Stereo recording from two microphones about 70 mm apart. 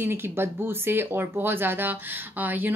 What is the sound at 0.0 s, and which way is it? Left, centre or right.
Speech, right.